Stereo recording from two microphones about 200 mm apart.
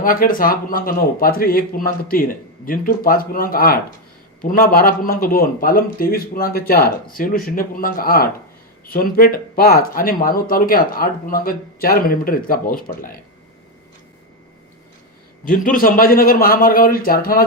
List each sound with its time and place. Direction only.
0.0 s speech: 45° left (ahead or behind)
15.4 s speech: 45° left (ahead or behind)